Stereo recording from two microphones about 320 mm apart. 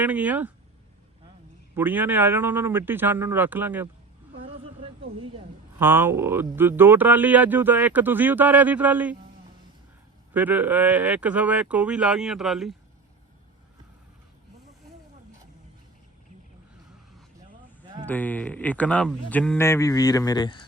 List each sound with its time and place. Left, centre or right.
0.0 s speech: centre
1.7 s a man's voice: centre
4.4 s a sound: centre
5.8 s speech: centre
10.3 s speech: centre
18.0 s speech: centre